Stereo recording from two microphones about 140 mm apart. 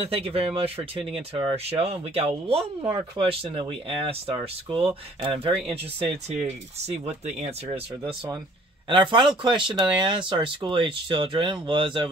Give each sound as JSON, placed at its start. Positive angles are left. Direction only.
{"t": 0.0, "sound": "speech", "side_deg": -45}
{"t": 6.2, "sound": "speech", "side_deg": -50}